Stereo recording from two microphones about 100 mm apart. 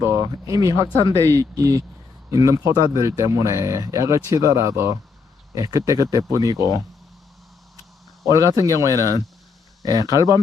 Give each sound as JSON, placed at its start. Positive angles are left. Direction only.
{"t": 0.0, "sound": "speech", "side_deg": -30}
{"t": 8.2, "sound": "speech", "side_deg": -30}
{"t": 9.9, "sound": "speech", "side_deg": 40}